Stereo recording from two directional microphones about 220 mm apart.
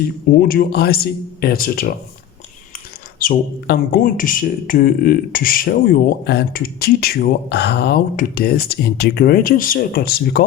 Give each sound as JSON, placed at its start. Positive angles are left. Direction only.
{"t": 0.3, "sound": "speech", "side_deg": 40}
{"t": 3.2, "sound": "speech", "side_deg": 40}